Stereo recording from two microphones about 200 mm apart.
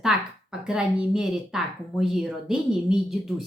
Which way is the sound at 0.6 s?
5° right (ahead or behind).